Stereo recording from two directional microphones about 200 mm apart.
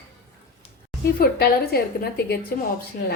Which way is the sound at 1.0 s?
50° left (ahead or behind).